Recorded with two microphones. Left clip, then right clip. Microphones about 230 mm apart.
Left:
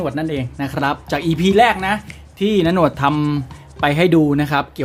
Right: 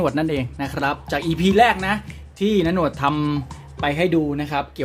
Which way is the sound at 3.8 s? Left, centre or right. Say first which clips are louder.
Left 5 dB; left.